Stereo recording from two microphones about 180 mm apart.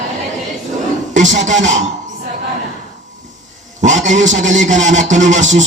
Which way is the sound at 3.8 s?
40° right (ahead or behind).